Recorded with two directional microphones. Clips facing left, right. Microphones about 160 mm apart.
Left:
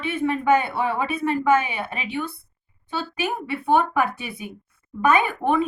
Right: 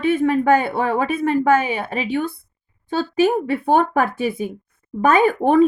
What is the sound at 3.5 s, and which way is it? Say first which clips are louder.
A woman's voice: right 3 dB; 40° right (ahead or behind).